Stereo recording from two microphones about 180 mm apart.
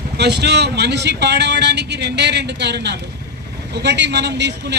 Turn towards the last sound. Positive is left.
turn(degrees=-75)  # may be behind; listen again after turning